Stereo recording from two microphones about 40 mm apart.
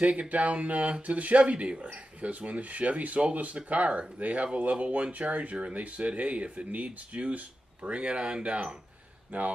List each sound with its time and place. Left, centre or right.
0.0 s speech: right